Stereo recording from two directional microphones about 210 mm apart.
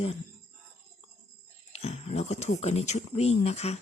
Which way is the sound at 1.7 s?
30° left (ahead or behind).